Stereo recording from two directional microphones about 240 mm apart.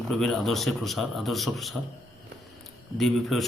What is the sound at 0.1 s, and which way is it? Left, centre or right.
A man's voice, centre.